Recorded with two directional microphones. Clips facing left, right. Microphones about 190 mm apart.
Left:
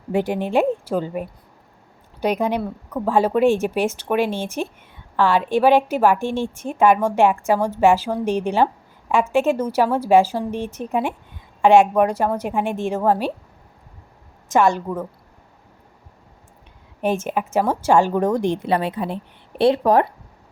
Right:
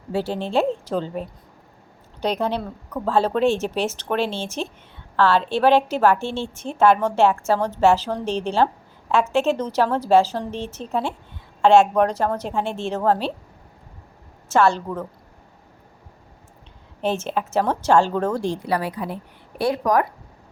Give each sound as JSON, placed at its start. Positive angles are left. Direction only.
{"t": 0.1, "sound": "a woman's voice", "side_deg": 15}
{"t": 14.5, "sound": "a woman's voice", "side_deg": 15}
{"t": 17.0, "sound": "a woman's voice", "side_deg": 10}